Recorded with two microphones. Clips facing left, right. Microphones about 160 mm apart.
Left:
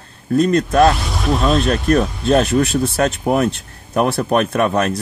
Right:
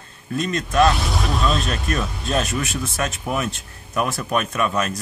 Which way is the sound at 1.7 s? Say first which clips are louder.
Left 10 dB; 45° left (ahead or behind).